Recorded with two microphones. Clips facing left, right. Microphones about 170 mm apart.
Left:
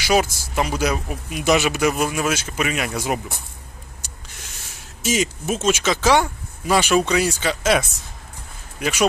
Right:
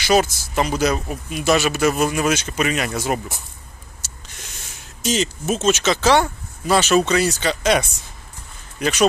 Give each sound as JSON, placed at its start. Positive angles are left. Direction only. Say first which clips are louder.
{"t": 0.0, "sound": "a man's voice", "louder": "right 2 dB", "side_deg": 10}
{"t": 2.0, "sound": "speech", "louder": "right 3 dB", "side_deg": 0}
{"t": 5.0, "sound": "a man's voice", "louder": "right 1 dB", "side_deg": 10}